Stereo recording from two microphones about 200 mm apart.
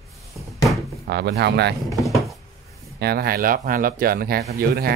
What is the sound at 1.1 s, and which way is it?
Speech, 55° right (ahead or behind).